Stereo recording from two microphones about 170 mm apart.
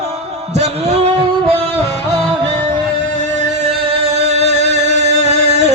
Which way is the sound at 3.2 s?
40° right (ahead or behind).